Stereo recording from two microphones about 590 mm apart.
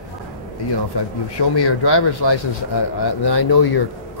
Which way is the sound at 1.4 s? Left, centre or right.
Left.